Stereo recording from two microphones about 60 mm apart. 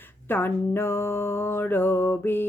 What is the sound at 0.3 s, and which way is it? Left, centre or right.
Mantra, left.